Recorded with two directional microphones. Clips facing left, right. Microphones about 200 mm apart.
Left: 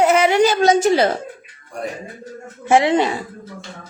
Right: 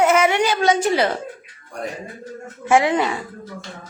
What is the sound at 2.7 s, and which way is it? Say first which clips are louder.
Speech: left 2 dB; 30° left (ahead or behind).